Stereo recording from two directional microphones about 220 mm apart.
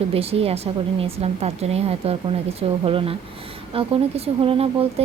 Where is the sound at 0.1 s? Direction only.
25° right (ahead or behind).